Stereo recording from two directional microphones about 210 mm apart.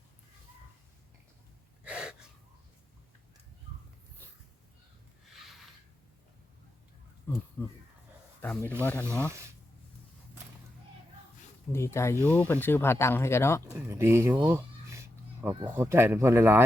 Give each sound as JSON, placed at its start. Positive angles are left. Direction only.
{"t": 1.8, "sound": "gasp", "side_deg": -5}
{"t": 5.3, "sound": "a sound", "side_deg": 0}
{"t": 7.3, "sound": "a sound", "side_deg": 10}
{"t": 8.4, "sound": "a man's voice", "side_deg": 10}
{"t": 9.0, "sound": "speech", "side_deg": -10}
{"t": 11.7, "sound": "speech", "side_deg": 10}
{"t": 13.7, "sound": "speech", "side_deg": -10}